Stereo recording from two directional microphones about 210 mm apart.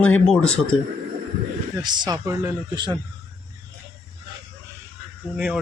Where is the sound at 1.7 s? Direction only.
20° right (ahead or behind).